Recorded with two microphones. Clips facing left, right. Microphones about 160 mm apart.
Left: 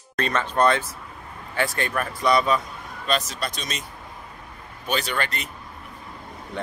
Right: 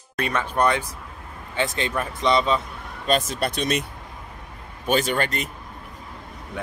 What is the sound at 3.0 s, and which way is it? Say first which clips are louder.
Speech: right 4 dB; 50° right (ahead or behind).